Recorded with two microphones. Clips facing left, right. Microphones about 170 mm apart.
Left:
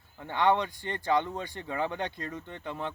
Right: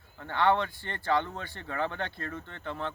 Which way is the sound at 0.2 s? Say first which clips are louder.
Even; 15° left (ahead or behind).